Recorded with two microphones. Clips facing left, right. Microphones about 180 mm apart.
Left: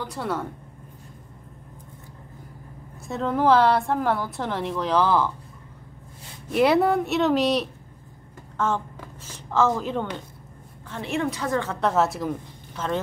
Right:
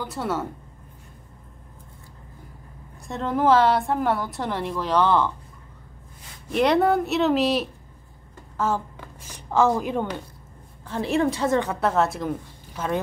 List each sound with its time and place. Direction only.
0.0 s speech: centre (ahead or behind)
3.1 s a woman's voice: centre (ahead or behind)
6.5 s a woman's voice: 5° left (ahead or behind)
8.5 s a sound: 5° right (ahead or behind)
10.9 s a woman's voice: 35° right (ahead or behind)
11.7 s a woman's voice: centre (ahead or behind)
12.7 s speech: 10° right (ahead or behind)